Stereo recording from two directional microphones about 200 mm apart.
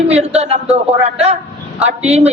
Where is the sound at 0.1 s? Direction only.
30° right (ahead or behind).